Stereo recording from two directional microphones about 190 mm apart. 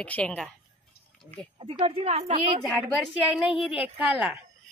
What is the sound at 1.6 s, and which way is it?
Speech, 30° right (ahead or behind).